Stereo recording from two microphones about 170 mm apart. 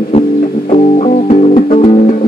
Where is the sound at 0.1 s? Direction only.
40° left (ahead or behind).